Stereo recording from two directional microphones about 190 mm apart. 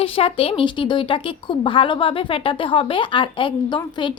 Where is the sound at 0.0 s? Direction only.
30° left (ahead or behind).